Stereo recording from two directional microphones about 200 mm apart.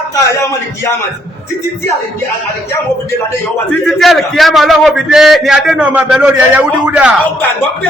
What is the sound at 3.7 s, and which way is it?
A man's voice, centre (ahead or behind).